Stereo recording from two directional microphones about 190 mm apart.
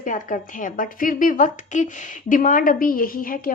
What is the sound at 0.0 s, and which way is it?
A woman's voice, 45° left (ahead or behind).